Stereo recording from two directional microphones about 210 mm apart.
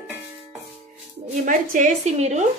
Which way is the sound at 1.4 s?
40° right (ahead or behind).